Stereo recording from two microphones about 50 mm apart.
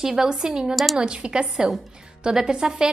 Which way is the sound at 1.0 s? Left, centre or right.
Centre.